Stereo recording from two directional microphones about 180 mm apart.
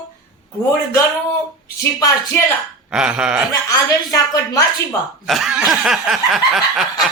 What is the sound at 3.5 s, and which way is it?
Speech, 20° left (ahead or behind).